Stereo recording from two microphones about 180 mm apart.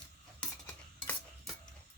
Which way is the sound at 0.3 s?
5° left (ahead or behind).